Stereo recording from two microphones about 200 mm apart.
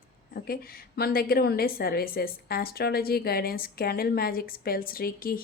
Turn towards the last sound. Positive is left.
turn(degrees=45)  # may be behind; listen again after turning